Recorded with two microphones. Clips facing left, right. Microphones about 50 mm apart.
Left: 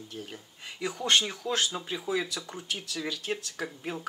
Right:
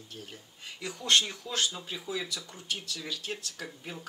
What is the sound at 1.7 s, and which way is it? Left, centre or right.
Speech, left.